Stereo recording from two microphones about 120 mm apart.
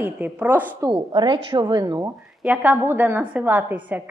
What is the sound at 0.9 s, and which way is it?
A woman's voice, 40° right (ahead or behind).